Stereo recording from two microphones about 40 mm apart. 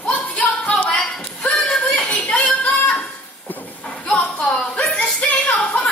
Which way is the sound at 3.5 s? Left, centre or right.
Left.